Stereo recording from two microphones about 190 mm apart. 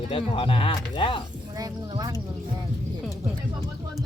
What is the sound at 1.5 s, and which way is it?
Speech, 20° right (ahead or behind).